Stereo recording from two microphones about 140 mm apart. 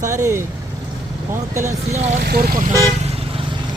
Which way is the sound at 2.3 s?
85° right.